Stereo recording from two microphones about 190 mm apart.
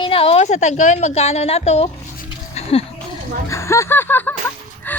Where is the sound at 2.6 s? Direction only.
30° left (ahead or behind).